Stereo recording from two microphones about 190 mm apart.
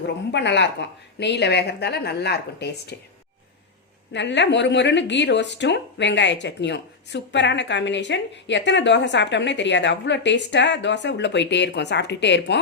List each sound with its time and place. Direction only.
0.3 s a woman's voice: 65° left (ahead or behind)
4.1 s speech: 70° left (ahead or behind)